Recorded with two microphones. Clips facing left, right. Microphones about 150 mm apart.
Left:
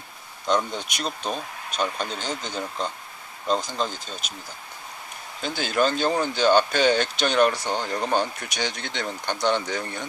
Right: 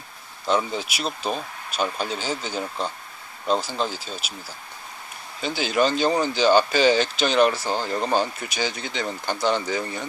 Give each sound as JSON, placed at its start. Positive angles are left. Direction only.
{"t": 0.5, "sound": "speech", "side_deg": -5}
{"t": 5.4, "sound": "speech", "side_deg": -5}